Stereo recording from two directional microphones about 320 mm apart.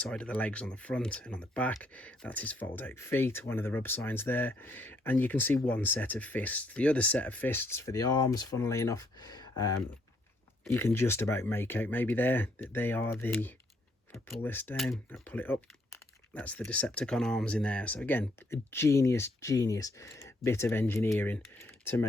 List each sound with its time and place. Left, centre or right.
0.0 s speech: centre